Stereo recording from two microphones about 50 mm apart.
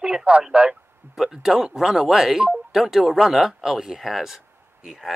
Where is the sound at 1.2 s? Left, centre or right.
Centre.